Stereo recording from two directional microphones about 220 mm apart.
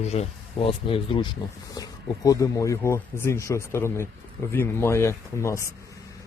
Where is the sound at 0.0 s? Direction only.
30° left (ahead or behind).